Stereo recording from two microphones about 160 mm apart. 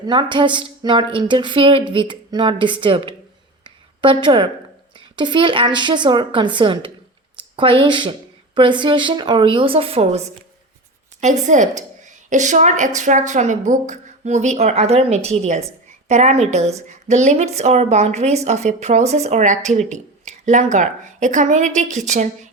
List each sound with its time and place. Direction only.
0.0 s a woman's voice: 30° right (ahead or behind)
3.6 s a sound: 30° right (ahead or behind)
4.9 s a woman's voice: 30° right (ahead or behind)
11.2 s a woman's voice: 50° right (ahead or behind)